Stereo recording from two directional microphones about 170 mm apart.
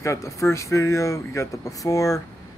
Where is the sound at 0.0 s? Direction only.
15° left (ahead or behind).